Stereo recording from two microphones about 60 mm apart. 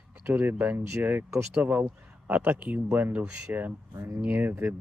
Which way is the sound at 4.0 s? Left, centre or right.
Right.